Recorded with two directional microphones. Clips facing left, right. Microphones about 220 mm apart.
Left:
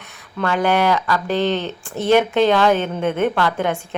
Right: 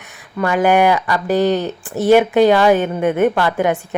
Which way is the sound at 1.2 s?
40° right (ahead or behind).